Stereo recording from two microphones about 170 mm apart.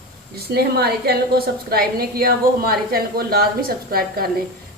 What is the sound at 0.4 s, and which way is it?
A woman's voice, 70° right (ahead or behind).